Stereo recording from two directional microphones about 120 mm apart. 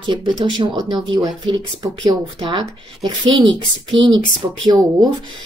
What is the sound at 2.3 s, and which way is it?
Speech, 45° right (ahead or behind).